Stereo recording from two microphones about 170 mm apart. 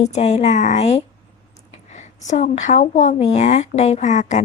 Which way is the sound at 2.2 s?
45° left (ahead or behind).